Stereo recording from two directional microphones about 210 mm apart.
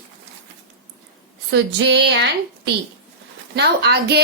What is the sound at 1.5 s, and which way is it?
A woman's voice, 55° right (ahead or behind).